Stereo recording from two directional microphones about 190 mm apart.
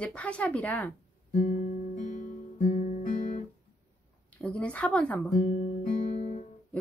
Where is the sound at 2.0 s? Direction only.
40° left (ahead or behind).